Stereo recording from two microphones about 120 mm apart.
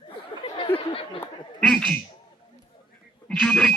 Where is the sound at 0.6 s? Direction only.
50° left (ahead or behind).